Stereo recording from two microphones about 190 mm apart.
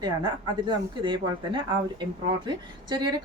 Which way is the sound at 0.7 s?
25° right (ahead or behind).